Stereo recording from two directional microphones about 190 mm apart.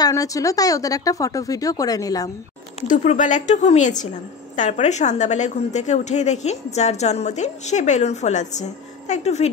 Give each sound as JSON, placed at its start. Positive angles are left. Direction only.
{"t": 0.0, "sound": "speech", "side_deg": 20}
{"t": 2.9, "sound": "a woman's voice", "side_deg": 40}